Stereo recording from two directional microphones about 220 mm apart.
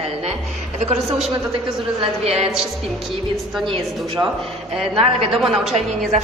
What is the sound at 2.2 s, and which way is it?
Speech, 30° right (ahead or behind).